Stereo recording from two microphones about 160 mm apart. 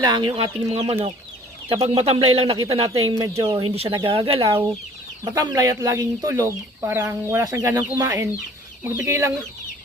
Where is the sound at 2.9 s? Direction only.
25° right (ahead or behind).